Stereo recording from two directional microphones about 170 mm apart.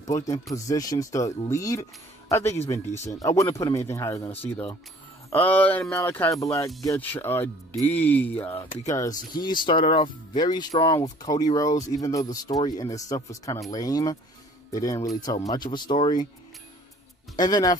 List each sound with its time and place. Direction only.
0.0 s speech: 20° left (ahead or behind)
17.4 s speech: 20° left (ahead or behind)